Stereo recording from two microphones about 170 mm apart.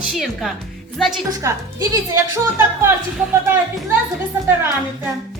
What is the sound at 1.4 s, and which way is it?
Speech, 15° right (ahead or behind).